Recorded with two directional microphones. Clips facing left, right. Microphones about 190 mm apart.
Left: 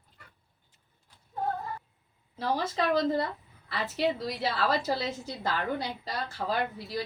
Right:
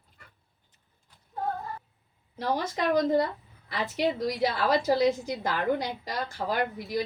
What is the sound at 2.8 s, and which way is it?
A woman's voice, 15° right (ahead or behind).